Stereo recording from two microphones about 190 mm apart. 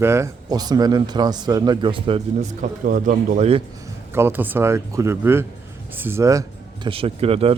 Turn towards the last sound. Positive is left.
turn(degrees=-30)  # may be behind; listen again after turning